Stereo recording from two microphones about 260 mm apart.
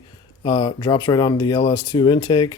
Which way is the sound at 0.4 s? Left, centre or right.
Centre.